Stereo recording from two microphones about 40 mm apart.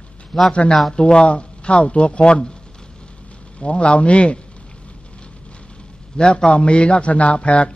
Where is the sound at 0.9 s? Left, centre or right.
Left.